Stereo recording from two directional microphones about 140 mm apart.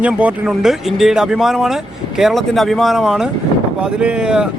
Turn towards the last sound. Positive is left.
turn(degrees=-5)  # may be behind; listen again after turning